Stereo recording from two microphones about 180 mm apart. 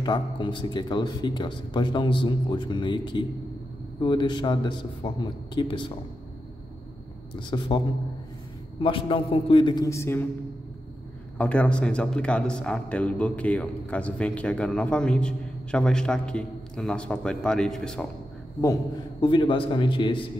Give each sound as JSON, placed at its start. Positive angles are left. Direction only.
{"t": 0.0, "sound": "speech", "side_deg": 25}
{"t": 7.3, "sound": "speech", "side_deg": 25}
{"t": 8.8, "sound": "speech", "side_deg": 30}
{"t": 11.3, "sound": "a man's voice", "side_deg": 5}
{"t": 19.2, "sound": "speech", "side_deg": 30}